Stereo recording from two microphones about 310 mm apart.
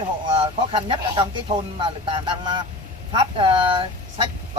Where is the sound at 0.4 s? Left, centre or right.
Centre.